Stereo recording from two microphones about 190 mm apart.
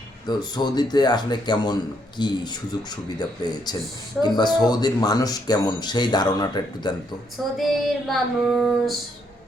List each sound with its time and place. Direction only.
0.3 s speech: 20° left (ahead or behind)
7.5 s female singing: centre (ahead or behind)